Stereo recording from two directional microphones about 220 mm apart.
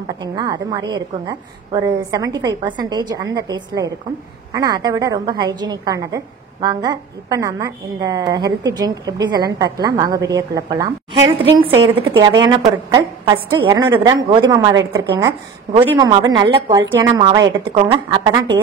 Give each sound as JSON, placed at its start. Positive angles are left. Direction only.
{"t": 0.2, "sound": "a woman's voice", "side_deg": -20}
{"t": 11.9, "sound": "a woman's voice", "side_deg": -10}